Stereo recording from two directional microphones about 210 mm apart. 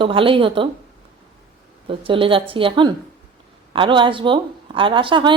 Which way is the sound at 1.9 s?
25° right (ahead or behind).